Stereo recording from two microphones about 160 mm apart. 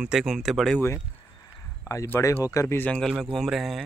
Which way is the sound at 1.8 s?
15° left (ahead or behind).